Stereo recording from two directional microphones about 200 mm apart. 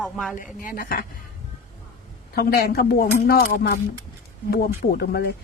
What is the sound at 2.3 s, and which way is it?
Speech, 50° left (ahead or behind).